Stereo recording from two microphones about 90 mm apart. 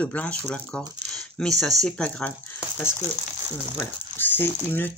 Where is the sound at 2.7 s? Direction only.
30° left (ahead or behind).